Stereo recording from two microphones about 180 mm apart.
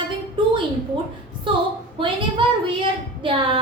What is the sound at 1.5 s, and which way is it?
A woman's voice, 25° right (ahead or behind).